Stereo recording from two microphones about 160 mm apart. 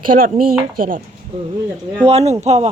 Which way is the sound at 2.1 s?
40° right (ahead or behind).